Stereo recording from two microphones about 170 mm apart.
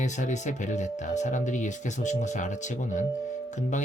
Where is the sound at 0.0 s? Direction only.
45° left (ahead or behind).